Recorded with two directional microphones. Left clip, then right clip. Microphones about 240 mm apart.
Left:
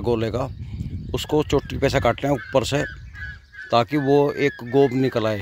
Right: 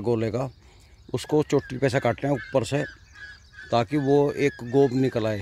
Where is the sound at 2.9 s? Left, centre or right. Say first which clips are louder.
Left 7 dB; right.